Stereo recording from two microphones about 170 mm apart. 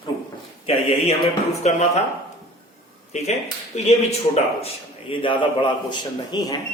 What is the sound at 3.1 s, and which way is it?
A man's voice, 40° left (ahead or behind).